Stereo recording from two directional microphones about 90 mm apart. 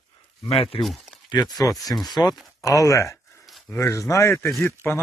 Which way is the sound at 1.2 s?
45° left (ahead or behind).